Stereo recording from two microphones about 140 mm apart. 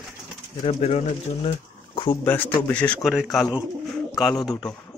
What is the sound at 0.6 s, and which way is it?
Speech, 50° left (ahead or behind).